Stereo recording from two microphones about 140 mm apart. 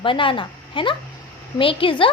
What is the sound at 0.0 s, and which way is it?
A woman's voice, 35° left (ahead or behind).